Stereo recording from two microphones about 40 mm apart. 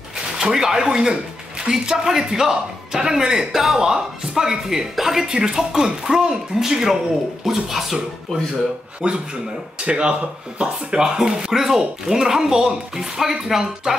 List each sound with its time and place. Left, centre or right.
0.4 s speech: centre
9.0 s speech: right
10.6 s speech: centre